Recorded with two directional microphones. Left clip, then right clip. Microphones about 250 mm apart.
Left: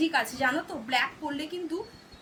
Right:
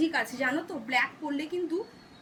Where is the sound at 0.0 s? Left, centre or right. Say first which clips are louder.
Left 2 dB; centre.